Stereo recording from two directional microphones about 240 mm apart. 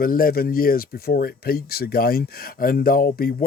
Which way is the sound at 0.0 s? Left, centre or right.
Left.